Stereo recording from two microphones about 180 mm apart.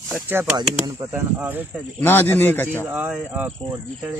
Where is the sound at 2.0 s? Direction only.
10° left (ahead or behind).